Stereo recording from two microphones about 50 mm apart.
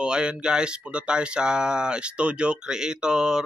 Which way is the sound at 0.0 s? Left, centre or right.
Centre.